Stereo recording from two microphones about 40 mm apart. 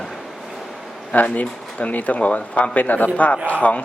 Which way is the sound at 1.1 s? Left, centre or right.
Left.